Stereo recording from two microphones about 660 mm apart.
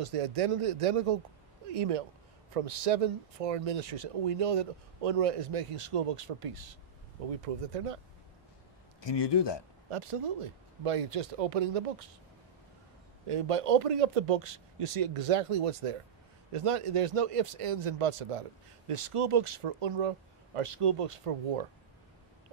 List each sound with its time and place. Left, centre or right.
0.0 s speech: right
9.0 s speech: left
9.8 s speech: right
13.3 s speech: right